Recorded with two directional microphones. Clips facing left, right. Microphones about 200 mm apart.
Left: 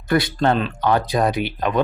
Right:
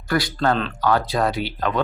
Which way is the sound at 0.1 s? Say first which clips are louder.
Left 3 dB; 20° left (ahead or behind).